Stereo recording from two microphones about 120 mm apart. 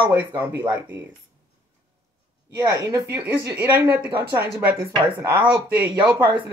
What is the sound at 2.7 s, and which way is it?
Speech, 30° right (ahead or behind).